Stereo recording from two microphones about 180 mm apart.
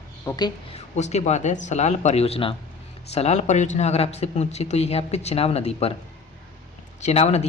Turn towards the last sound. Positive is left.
turn(degrees=35)  # may be behind; listen again after turning